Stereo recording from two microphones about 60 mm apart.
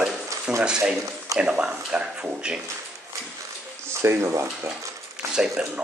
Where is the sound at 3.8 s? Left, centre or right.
Right.